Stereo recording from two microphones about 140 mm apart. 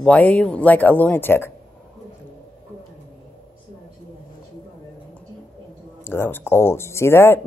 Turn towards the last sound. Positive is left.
turn(degrees=20)  # may be behind; listen again after turning